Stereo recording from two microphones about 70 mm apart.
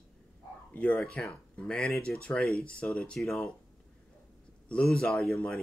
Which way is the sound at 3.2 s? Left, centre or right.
Centre.